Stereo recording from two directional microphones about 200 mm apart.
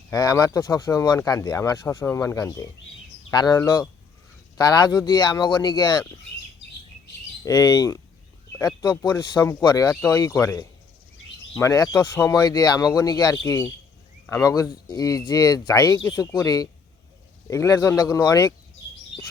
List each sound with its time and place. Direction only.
0.1 s speech: 20° left (ahead or behind)
7.4 s speech: 20° left (ahead or behind)